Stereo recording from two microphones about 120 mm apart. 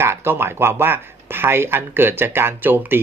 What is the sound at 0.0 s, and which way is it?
Speech, 20° right (ahead or behind).